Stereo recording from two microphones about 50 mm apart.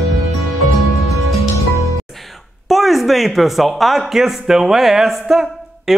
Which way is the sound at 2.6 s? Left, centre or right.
Centre.